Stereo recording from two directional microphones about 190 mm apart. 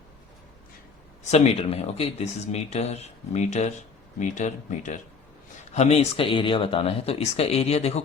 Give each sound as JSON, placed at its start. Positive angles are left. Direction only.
{"t": 1.3, "sound": "speech", "side_deg": 35}